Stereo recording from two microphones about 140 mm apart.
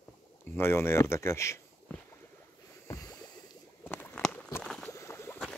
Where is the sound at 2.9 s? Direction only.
25° left (ahead or behind).